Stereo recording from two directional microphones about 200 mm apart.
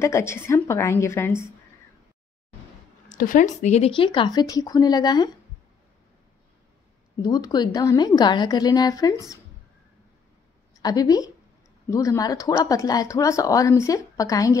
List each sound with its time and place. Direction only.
0.0 s speech: 15° left (ahead or behind)
3.2 s a woman's voice: 40° left (ahead or behind); by 5.3 s 20° left (ahead or behind)
7.2 s a woman's voice: 20° left (ahead or behind)
10.8 s speech: 20° left (ahead or behind)